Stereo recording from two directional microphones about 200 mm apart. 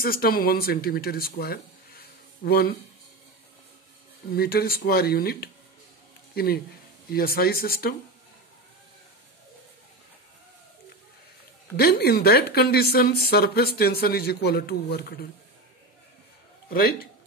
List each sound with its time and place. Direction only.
0.0 s speech: 50° left (ahead or behind)
4.3 s a woman's voice: 50° left (ahead or behind)
11.7 s a woman's voice: 50° left (ahead or behind)
16.6 s a woman's voice: 50° left (ahead or behind)